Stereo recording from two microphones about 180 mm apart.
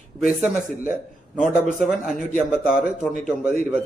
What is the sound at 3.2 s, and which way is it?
Speech, 40° right (ahead or behind).